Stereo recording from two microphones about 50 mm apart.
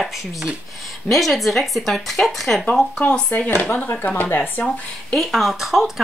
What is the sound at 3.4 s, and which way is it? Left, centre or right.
Speech, left.